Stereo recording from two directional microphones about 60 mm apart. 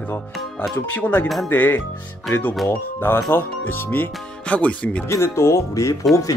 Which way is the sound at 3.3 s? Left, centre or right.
Left.